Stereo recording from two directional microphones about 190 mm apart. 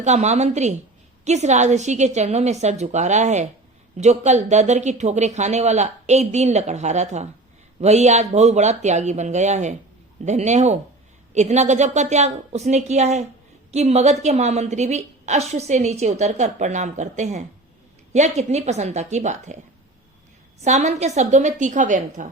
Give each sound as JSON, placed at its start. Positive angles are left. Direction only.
{"t": 0.0, "sound": "a woman's voice", "side_deg": -35}
{"t": 20.6, "sound": "a woman's voice", "side_deg": -35}